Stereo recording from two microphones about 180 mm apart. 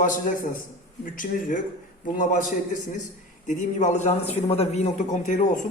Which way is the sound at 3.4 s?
45° left (ahead or behind).